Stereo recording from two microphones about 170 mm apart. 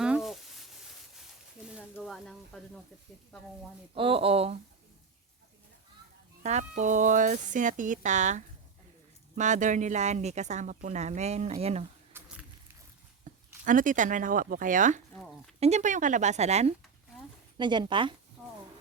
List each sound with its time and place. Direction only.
0.0 s sizzle: 5° right (ahead or behind)
1.7 s a sound: centre (ahead or behind)
3.9 s speech: 35° right (ahead or behind)
6.4 s speech: 45° right (ahead or behind)
12.1 s a sound: 15° right (ahead or behind)
13.2 s speech: 50° right (ahead or behind)
15.1 s speech: centre (ahead or behind)
15.6 s speech: 45° right (ahead or behind)
17.6 s speech: 25° right (ahead or behind)